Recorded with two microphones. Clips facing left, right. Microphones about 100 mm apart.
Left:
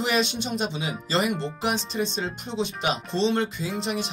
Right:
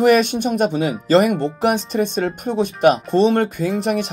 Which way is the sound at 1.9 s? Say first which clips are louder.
Right 8 dB; 60° right (ahead or behind).